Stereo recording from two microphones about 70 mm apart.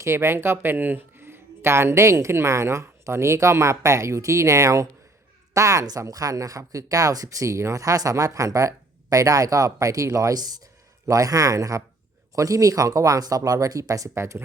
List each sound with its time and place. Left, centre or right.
0.0 s speech: right
11.0 s speech: right
14.1 s speech: right